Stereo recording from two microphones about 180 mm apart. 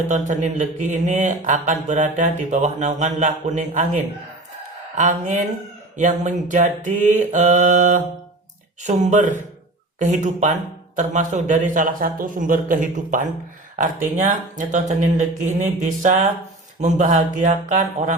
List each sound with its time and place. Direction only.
0.1 s speech: 45° right (ahead or behind)